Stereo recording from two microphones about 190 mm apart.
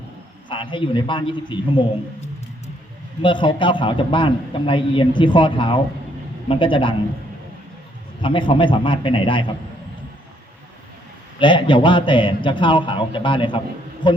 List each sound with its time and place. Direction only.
0.4 s a man's voice: 25° left (ahead or behind)
3.2 s a man's voice: 25° left (ahead or behind)
8.2 s a man's voice: 25° left (ahead or behind)
11.3 s a man's voice: 25° left (ahead or behind)